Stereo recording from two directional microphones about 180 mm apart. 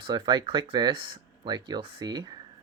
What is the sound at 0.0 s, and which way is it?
Speech, 25° right (ahead or behind).